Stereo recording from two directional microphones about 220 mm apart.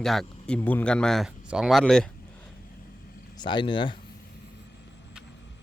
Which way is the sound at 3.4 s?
20° left (ahead or behind).